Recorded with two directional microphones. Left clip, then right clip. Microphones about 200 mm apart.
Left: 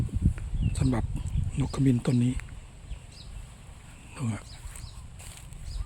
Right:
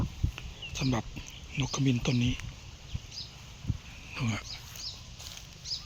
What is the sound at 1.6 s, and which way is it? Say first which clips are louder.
Speech: left 3 dB; 35° left (ahead or behind).